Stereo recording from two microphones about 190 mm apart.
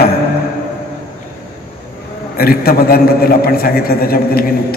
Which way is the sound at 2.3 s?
50° left (ahead or behind).